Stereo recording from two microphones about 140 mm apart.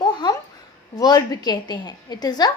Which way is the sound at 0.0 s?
30° left (ahead or behind).